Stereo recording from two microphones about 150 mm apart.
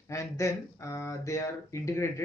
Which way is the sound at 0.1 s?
20° left (ahead or behind).